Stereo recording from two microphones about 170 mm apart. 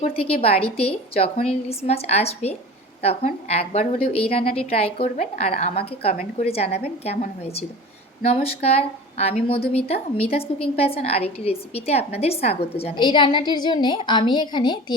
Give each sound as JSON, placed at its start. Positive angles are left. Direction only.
{"t": 0.0, "sound": "a woman's voice", "side_deg": 35}